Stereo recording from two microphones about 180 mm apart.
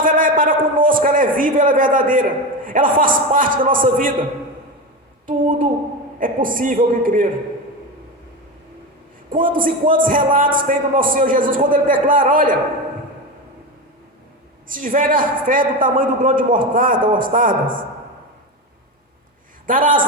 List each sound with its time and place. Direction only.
0.0 s a man's voice: 50° right (ahead or behind)
5.2 s a sound: 50° right (ahead or behind)
6.1 s speech: 50° right (ahead or behind)
9.3 s speech: 50° right (ahead or behind)
14.7 s speech: 45° right (ahead or behind)
19.6 s speech: 50° right (ahead or behind)